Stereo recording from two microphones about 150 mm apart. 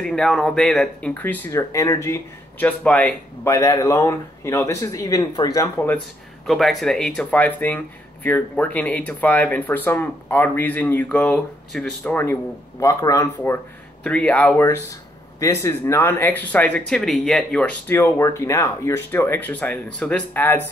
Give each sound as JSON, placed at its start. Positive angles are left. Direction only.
{"t": 0.0, "sound": "speech", "side_deg": 5}
{"t": 2.8, "sound": "speech", "side_deg": 10}
{"t": 3.4, "sound": "speech", "side_deg": 20}
{"t": 6.4, "sound": "speech", "side_deg": 0}
{"t": 12.8, "sound": "speech", "side_deg": 20}
{"t": 14.0, "sound": "speech", "side_deg": 10}